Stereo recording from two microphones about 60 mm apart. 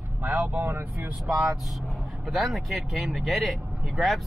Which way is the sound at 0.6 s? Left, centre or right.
Right.